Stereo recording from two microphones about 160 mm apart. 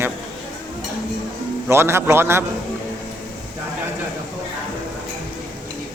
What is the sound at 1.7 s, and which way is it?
Speech, 15° right (ahead or behind).